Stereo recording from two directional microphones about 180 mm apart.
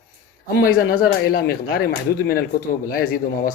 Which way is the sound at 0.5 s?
60° left (ahead or behind).